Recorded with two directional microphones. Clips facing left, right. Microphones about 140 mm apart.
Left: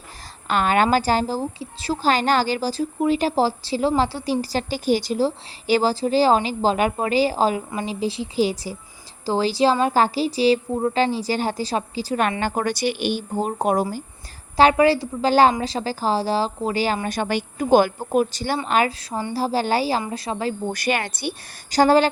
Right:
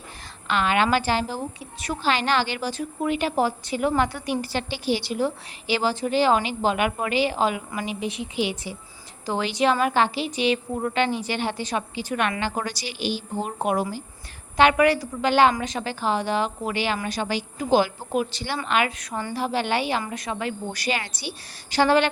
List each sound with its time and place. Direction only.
0.4 s a woman's voice: 45° left (ahead or behind)
17.2 s a woman's voice: 55° left (ahead or behind); by 20.6 s 30° left (ahead or behind)
20.7 s a woman's voice: 55° left (ahead or behind)
21.7 s a woman's voice: 40° left (ahead or behind)